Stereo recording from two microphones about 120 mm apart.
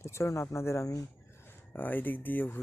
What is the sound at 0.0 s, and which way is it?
Speech, 25° left (ahead or behind).